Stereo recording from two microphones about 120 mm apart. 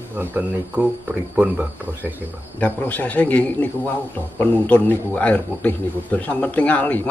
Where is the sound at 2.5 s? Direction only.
15° left (ahead or behind).